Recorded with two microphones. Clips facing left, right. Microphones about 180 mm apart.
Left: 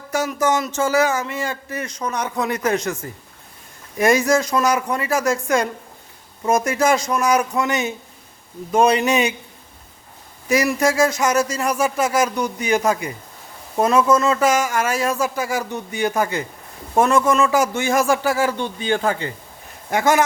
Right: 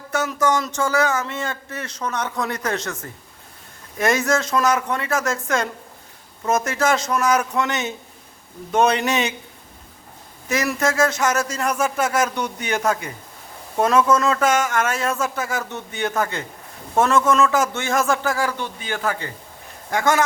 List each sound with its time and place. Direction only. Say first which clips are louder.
0.1 s speech: left 1 dB; 15° left (ahead or behind)
10.5 s speech: left 4 dB; 15° left (ahead or behind)